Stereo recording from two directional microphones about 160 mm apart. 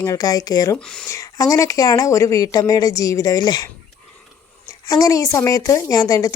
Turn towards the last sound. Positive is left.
turn(degrees=25)  # may be behind; listen again after turning